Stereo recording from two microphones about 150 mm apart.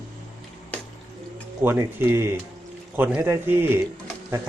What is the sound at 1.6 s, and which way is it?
Speech, 15° right (ahead or behind).